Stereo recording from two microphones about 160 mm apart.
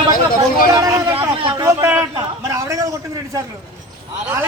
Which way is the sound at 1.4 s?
35° right (ahead or behind).